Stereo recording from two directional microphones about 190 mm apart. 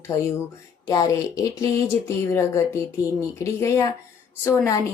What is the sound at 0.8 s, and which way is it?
Speech, 20° left (ahead or behind).